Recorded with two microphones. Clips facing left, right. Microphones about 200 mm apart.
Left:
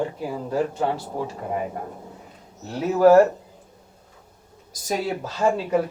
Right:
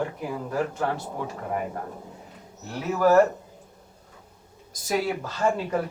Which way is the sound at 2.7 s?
25° left (ahead or behind).